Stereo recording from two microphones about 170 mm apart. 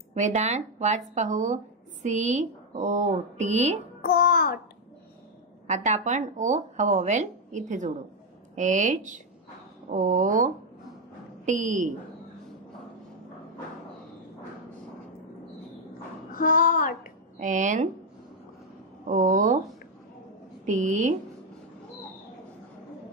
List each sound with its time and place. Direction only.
0.1 s speech: 45° right (ahead or behind)
4.0 s music: 65° left (ahead or behind)
5.7 s speech: 45° right (ahead or behind)
16.3 s speech: 55° left (ahead or behind)
17.4 s speech: 45° right (ahead or behind)
19.0 s speech: 45° right (ahead or behind)
20.6 s speech: 45° right (ahead or behind)